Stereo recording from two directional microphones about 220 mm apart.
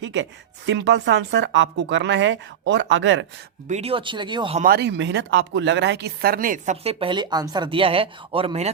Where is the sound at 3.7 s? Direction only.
30° right (ahead or behind).